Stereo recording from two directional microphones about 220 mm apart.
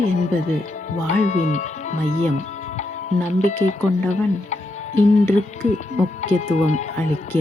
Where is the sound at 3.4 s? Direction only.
35° left (ahead or behind).